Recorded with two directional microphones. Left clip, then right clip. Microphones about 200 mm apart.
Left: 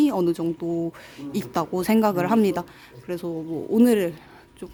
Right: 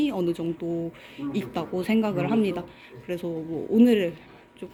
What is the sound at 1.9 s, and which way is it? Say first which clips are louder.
Speech: left 5 dB; 30° left (ahead or behind).